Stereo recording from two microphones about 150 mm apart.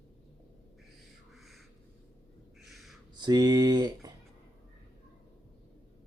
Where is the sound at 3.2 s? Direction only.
25° right (ahead or behind).